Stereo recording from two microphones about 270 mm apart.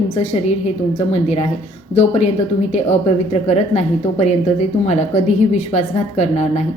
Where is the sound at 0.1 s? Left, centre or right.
Left.